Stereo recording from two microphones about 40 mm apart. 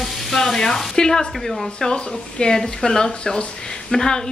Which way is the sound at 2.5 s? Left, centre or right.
Centre.